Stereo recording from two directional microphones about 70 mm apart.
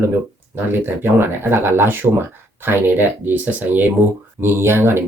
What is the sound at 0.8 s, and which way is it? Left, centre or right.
Speech, right.